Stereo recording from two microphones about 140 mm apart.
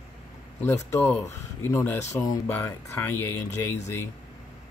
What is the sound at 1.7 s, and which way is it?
Speech, 15° left (ahead or behind).